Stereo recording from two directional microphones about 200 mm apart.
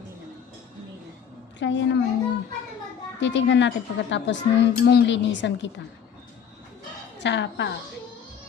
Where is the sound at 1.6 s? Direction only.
65° left (ahead or behind).